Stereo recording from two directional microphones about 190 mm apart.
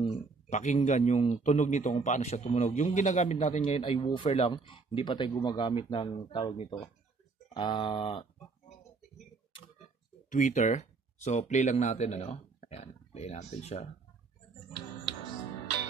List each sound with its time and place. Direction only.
0.0 s a man's voice: 35° left (ahead or behind)
10.3 s speech: 40° left (ahead or behind)